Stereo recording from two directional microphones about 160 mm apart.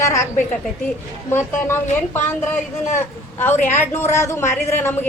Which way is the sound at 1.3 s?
15° left (ahead or behind).